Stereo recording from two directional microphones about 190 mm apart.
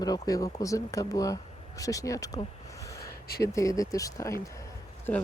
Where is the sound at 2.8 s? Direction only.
15° left (ahead or behind).